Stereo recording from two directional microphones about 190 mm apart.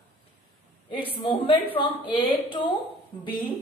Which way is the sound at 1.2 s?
25° left (ahead or behind).